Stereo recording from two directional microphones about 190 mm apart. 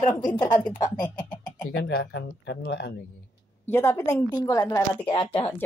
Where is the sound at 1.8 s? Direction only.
60° left (ahead or behind).